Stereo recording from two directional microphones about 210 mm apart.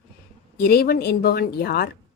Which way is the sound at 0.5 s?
45° left (ahead or behind).